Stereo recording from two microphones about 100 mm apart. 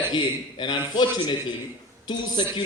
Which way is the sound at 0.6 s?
50° left (ahead or behind).